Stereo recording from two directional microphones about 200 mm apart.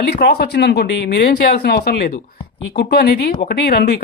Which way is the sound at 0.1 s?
55° left (ahead or behind).